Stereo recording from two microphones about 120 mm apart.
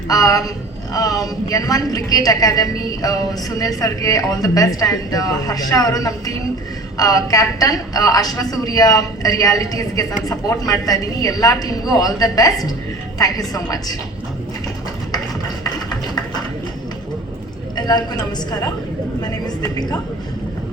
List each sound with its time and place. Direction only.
0.1 s a woman's voice: 30° left (ahead or behind)
17.7 s a man's voice: 35° left (ahead or behind)
19.2 s a woman's voice: 35° left (ahead or behind)